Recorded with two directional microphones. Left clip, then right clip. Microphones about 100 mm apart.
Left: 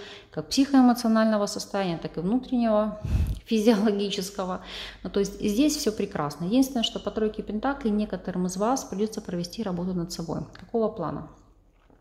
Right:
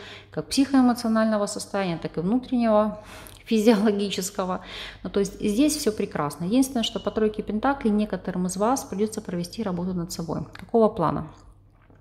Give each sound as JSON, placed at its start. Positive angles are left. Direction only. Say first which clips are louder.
{"t": 0.3, "sound": "a woman's voice", "louder": "right 1 dB", "side_deg": -10}
{"t": 10.7, "sound": "speech", "louder": "right 7 dB", "side_deg": -35}